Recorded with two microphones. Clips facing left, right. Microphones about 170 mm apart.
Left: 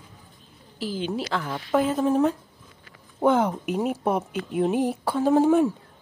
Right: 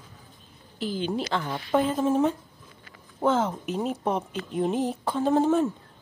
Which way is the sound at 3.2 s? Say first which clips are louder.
Left 3 dB; 10° left (ahead or behind).